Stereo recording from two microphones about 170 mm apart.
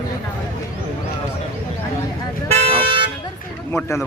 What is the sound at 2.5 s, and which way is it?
Vehicle, 35° right (ahead or behind).